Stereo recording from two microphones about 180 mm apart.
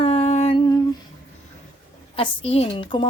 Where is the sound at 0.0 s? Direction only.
35° left (ahead or behind).